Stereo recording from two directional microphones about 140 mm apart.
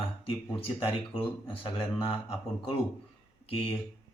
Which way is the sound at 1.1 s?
40° left (ahead or behind).